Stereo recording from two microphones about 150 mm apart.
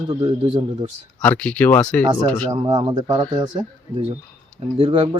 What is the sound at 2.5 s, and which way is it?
Speech, 30° right (ahead or behind).